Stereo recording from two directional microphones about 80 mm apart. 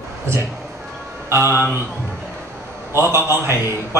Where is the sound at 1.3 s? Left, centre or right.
Right.